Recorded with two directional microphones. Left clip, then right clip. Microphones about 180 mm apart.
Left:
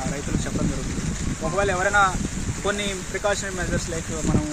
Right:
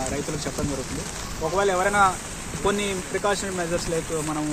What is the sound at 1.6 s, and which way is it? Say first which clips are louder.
Speech: even; 15° left (ahead or behind).